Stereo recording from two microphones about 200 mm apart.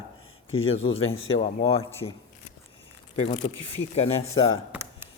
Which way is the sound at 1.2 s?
30° left (ahead or behind).